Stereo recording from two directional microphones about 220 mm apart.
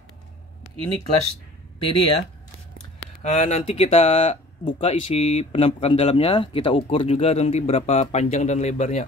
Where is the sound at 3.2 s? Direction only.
30° left (ahead or behind).